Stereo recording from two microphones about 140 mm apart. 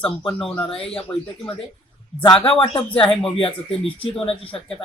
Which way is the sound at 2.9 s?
40° left (ahead or behind).